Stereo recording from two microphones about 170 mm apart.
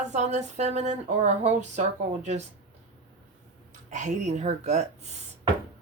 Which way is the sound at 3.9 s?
45° right (ahead or behind).